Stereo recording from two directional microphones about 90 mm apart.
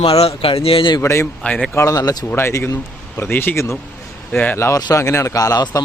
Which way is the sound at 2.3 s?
30° left (ahead or behind).